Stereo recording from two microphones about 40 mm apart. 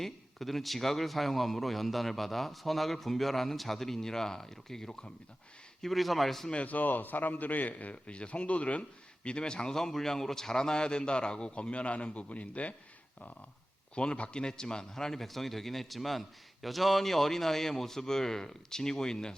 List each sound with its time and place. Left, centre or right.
0.0 s a man's voice: centre
5.8 s a man's voice: centre
6.7 s a man's voice: left
9.7 s a man's voice: centre; by 12.7 s left
13.9 s a man's voice: left